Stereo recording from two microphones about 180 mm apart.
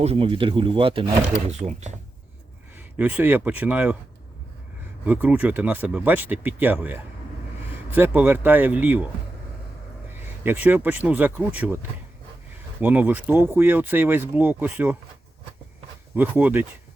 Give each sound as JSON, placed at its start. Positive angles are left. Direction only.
{"t": 0.0, "sound": "speech", "side_deg": -30}
{"t": 2.7, "sound": "speech", "side_deg": -10}
{"t": 5.0, "sound": "speech", "side_deg": -10}
{"t": 10.1, "sound": "speech", "side_deg": -10}
{"t": 16.1, "sound": "speech", "side_deg": -10}